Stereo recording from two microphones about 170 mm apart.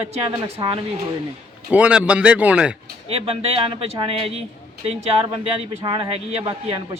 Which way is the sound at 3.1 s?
35° right (ahead or behind).